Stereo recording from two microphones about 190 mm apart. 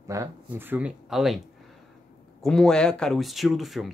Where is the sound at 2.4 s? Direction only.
5° left (ahead or behind).